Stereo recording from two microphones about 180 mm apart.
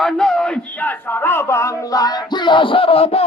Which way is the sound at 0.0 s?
Centre (ahead or behind).